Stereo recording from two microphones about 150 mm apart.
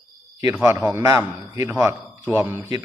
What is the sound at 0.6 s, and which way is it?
A man's voice, 15° right (ahead or behind).